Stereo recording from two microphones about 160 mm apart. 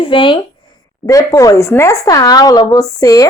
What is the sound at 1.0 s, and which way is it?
Speech, 20° left (ahead or behind).